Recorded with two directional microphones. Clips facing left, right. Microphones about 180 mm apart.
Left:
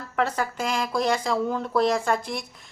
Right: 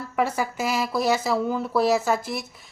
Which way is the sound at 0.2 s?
10° right (ahead or behind).